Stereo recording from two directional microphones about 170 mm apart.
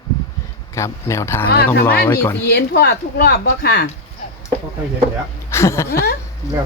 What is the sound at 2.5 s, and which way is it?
Speech, 70° left (ahead or behind).